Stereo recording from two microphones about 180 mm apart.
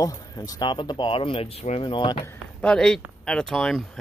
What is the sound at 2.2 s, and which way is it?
Speech, 5° left (ahead or behind).